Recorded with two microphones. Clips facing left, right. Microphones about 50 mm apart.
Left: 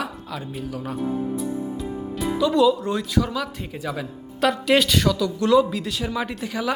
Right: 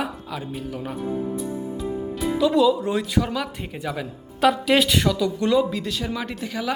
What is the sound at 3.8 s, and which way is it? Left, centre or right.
Speech, centre.